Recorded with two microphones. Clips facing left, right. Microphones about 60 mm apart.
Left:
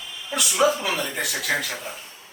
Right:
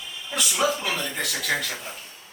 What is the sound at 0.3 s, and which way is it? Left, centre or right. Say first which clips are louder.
Speech: left 4 dB; centre.